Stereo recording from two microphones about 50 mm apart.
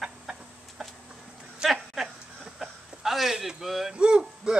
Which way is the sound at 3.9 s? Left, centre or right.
Centre.